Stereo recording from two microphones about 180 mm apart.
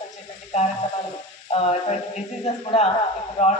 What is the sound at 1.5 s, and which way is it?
Speech, 35° left (ahead or behind).